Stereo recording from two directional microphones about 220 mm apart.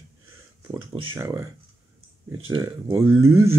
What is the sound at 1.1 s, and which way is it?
Speech, 10° right (ahead or behind).